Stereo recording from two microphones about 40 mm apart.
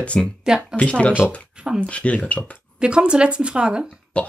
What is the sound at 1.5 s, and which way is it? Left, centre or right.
Speech, right.